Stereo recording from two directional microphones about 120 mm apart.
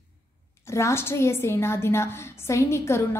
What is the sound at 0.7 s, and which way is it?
A woman's voice, 20° left (ahead or behind).